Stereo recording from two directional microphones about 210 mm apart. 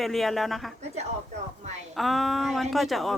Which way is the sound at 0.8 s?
30° right (ahead or behind).